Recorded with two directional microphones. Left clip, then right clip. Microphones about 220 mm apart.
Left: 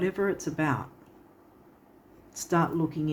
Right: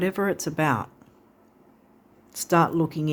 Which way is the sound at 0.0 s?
50° right (ahead or behind).